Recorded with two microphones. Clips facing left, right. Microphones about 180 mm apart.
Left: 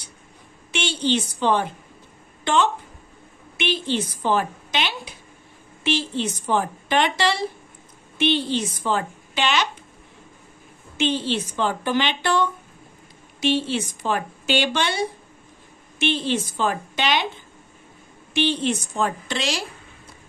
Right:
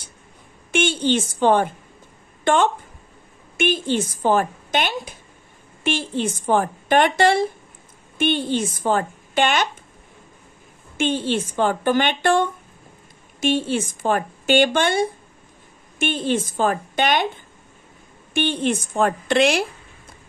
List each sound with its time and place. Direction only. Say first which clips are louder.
0.7 s speech: right 4 dB; 50° right (ahead or behind)
11.0 s speech: right 2 dB; 50° right (ahead or behind)
18.3 s speech: right 1 dB; 50° right (ahead or behind)